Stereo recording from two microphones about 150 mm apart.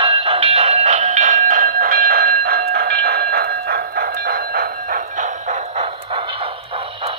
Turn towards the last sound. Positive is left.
turn(degrees=-45)  # may be behind; listen again after turning